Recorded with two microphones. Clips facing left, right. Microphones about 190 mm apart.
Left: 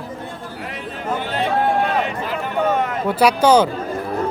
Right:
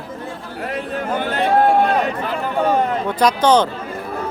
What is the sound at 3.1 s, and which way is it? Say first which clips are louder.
Speech: left 2 dB; 10° left (ahead or behind).